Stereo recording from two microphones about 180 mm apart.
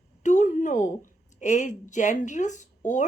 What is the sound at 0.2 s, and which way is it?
A woman's voice, 40° left (ahead or behind).